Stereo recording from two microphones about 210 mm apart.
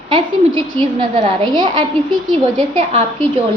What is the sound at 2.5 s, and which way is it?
Speech, 35° right (ahead or behind).